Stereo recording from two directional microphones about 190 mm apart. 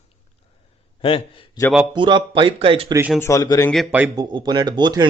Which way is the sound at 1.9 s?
25° right (ahead or behind).